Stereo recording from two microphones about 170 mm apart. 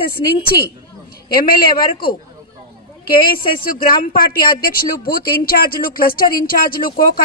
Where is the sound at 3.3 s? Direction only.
60° left (ahead or behind).